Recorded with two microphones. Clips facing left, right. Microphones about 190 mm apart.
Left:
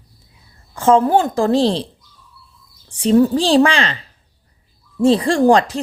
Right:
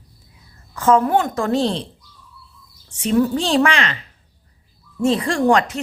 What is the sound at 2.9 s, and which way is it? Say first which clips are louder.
Speech: left 4 dB; 30° left (ahead or behind).